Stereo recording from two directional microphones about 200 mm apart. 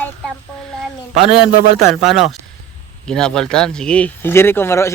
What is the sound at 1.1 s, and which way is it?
Speech, 30° right (ahead or behind).